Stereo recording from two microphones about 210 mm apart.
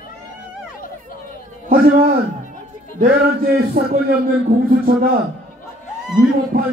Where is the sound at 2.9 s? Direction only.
45° right (ahead or behind).